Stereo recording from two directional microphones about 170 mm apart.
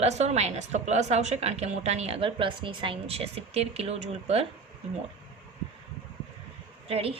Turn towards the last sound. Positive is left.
turn(degrees=-35)  # may be behind; listen again after turning